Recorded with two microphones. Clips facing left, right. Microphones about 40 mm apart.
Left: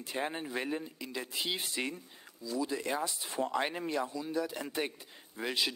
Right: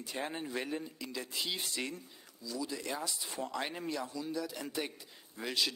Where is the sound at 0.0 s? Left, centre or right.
Left.